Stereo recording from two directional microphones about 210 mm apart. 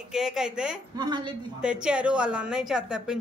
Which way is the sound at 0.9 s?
20° right (ahead or behind).